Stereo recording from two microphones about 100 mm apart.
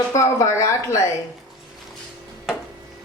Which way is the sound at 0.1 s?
30° left (ahead or behind).